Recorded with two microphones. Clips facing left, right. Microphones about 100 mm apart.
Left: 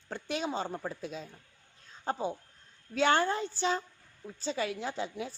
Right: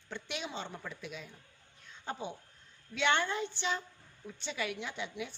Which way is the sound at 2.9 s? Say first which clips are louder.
Left 4 dB; 40° left (ahead or behind).